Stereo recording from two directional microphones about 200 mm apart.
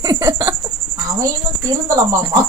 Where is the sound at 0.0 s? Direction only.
20° right (ahead or behind).